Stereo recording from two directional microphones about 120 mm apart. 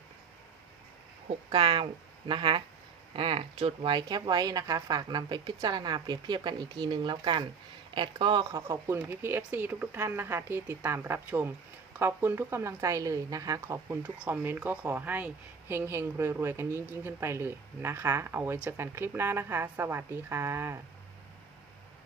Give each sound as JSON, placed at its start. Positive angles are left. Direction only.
{"t": 1.5, "sound": "speech", "side_deg": -45}
{"t": 8.4, "sound": "speech", "side_deg": -25}
{"t": 14.0, "sound": "speech", "side_deg": -15}